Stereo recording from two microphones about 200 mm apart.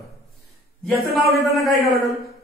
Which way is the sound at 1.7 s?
15° right (ahead or behind).